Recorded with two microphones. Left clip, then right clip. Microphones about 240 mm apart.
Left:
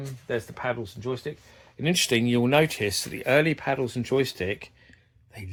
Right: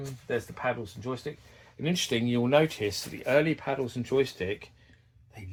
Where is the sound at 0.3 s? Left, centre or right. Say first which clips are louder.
Left 1 dB; left.